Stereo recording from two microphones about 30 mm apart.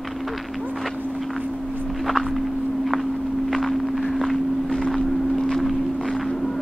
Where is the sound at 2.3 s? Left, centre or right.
Centre.